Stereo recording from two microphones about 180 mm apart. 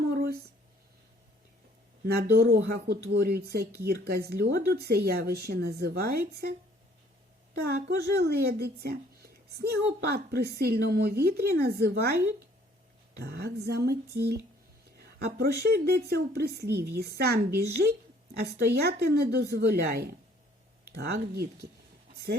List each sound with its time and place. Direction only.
0.0 s a sound: 60° right (ahead or behind)
2.0 s speech: 65° right (ahead or behind)
7.6 s speech: 65° right (ahead or behind)